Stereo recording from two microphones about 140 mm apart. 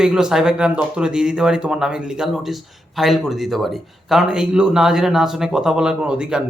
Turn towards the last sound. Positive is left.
turn(degrees=-5)  # may be behind; listen again after turning